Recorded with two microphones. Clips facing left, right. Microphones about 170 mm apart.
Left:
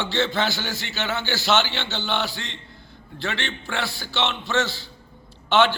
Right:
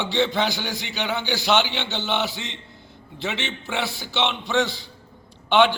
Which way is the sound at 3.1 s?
20° right (ahead or behind).